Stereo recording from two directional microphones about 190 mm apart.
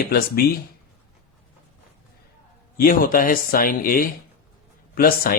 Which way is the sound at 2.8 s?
50° left (ahead or behind).